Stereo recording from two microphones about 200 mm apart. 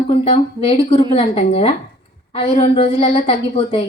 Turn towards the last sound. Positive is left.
turn(degrees=25)  # may be behind; listen again after turning